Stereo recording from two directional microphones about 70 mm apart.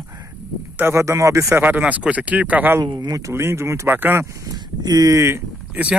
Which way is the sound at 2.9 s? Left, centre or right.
Right.